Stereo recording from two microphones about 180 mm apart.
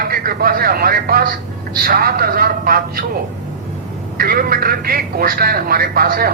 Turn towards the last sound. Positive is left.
turn(degrees=-55)  # may be behind; listen again after turning